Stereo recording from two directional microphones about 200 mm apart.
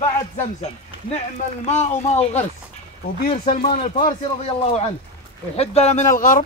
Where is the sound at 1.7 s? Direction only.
35° left (ahead or behind).